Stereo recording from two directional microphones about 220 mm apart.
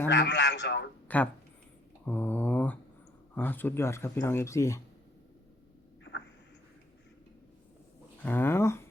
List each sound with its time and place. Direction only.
0.1 s a man's voice: 55° left (ahead or behind)
1.0 s speech: 5° left (ahead or behind)
2.0 s mantra: 5° left (ahead or behind)
3.3 s speech: 10° left (ahead or behind)
8.2 s speech: 10° left (ahead or behind)